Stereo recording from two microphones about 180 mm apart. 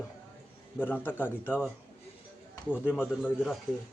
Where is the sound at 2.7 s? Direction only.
5° right (ahead or behind).